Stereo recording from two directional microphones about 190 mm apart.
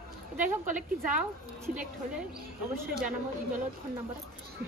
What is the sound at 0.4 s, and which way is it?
Speech, 45° right (ahead or behind).